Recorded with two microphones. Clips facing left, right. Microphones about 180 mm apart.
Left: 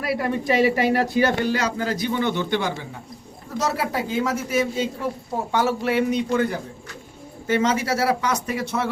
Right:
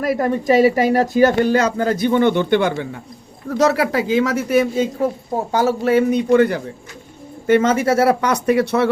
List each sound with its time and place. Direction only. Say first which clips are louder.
0.0 s a man's voice: right 5 dB; 45° right (ahead or behind); by 2.8 s 60° right (ahead or behind)
3.6 s speech: right 8 dB; 75° right (ahead or behind)
5.5 s a man's voice: right 5 dB; 40° right (ahead or behind); by 6.6 s 70° right (ahead or behind)
7.4 s speech: right 7 dB; 55° right (ahead or behind)